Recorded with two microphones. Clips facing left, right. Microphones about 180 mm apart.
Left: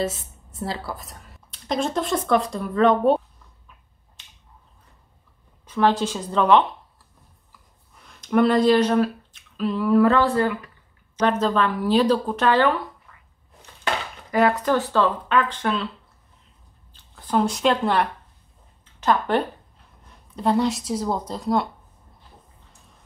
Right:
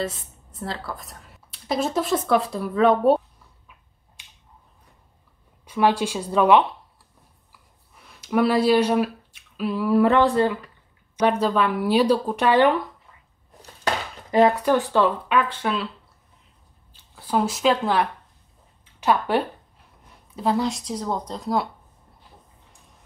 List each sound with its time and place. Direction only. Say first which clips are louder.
0.6 s speech: left 2 dB; 10° left (ahead or behind)
5.7 s speech: even; 10° right (ahead or behind)
8.0 s speech: left 2 dB; 5° right (ahead or behind)
10.0 s speech: right 1 dB; 20° right (ahead or behind)
14.6 s speech: right 1 dB; 15° right (ahead or behind)
16.9 s speech: left 1 dB; 10° right (ahead or behind)